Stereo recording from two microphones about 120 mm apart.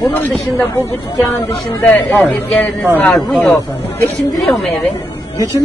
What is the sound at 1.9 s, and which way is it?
Speech, 10° left (ahead or behind).